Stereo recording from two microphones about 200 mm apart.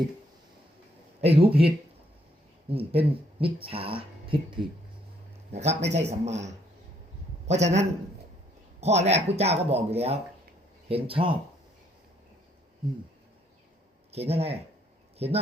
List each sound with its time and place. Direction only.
1.2 s a man's voice: 30° right (ahead or behind)
14.1 s speech: 30° right (ahead or behind)